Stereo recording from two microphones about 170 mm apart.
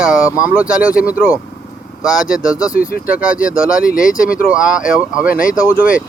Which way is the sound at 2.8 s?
60° left (ahead or behind).